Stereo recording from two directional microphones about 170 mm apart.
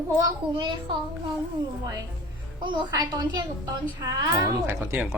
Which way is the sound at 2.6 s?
30° right (ahead or behind).